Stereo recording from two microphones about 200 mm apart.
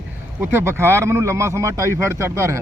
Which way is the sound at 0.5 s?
10° right (ahead or behind).